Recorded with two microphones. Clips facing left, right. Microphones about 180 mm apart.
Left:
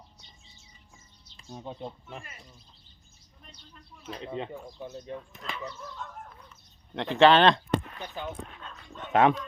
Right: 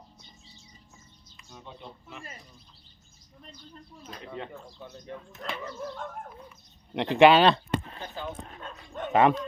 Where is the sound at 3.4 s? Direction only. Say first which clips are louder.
Right 5 dB; 35° right (ahead or behind).